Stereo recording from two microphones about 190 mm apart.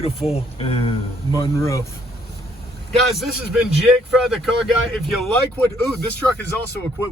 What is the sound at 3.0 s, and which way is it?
A man's voice, centre (ahead or behind).